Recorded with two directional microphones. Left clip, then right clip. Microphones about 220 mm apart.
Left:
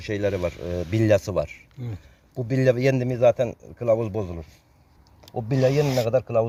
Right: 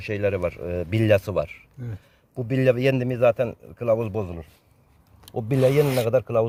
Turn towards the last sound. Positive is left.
turn(degrees=-25)  # may be behind; listen again after turning